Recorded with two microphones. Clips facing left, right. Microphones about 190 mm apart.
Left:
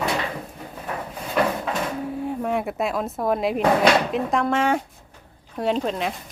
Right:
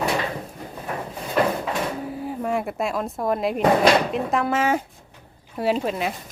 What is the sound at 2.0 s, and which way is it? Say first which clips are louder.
Speech: left 1 dB; centre (ahead or behind).